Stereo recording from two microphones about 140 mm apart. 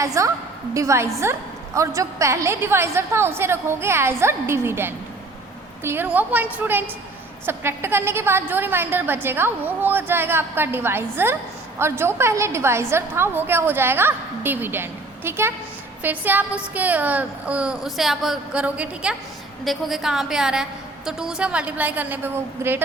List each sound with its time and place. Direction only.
0.0 s a woman's voice: 20° right (ahead or behind)